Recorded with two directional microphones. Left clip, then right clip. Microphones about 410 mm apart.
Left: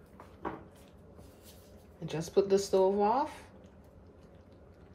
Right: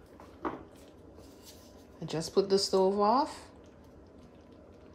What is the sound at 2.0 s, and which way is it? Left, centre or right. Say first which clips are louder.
A woman's voice: even; centre.